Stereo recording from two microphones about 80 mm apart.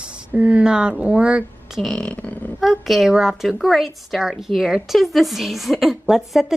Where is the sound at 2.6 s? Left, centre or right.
Centre.